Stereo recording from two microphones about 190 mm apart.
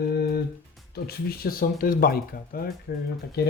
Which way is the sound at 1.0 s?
55° left (ahead or behind).